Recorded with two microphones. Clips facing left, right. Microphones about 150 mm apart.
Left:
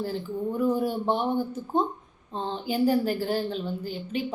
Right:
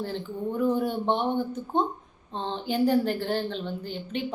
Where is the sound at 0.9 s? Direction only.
5° left (ahead or behind).